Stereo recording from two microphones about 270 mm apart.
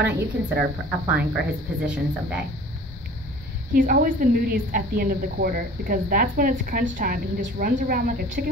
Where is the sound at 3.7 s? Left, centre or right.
Right.